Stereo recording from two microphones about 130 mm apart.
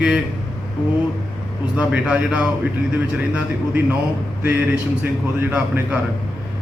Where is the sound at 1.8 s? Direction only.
10° right (ahead or behind).